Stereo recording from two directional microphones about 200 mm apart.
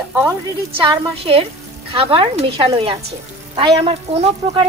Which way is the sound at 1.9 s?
25° right (ahead or behind).